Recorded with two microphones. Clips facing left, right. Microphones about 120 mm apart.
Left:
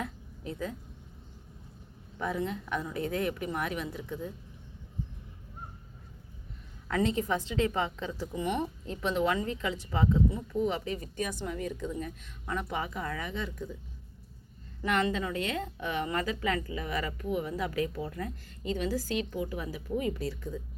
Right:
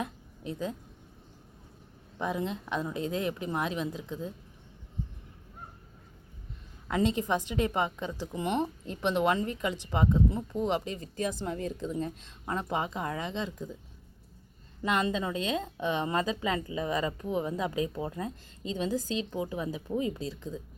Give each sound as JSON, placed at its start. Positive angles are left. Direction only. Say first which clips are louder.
{"t": 0.0, "sound": "a sound", "louder": "right 2 dB", "side_deg": -20}
{"t": 2.1, "sound": "speech", "louder": "even", "side_deg": -20}
{"t": 6.8, "sound": "speech", "louder": "right 1 dB", "side_deg": -20}
{"t": 8.4, "sound": "speech", "louder": "right 2 dB", "side_deg": -30}
{"t": 14.8, "sound": "speech", "louder": "even", "side_deg": -20}